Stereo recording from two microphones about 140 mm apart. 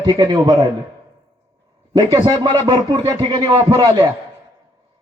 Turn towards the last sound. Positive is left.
turn(degrees=-25)  # may be behind; listen again after turning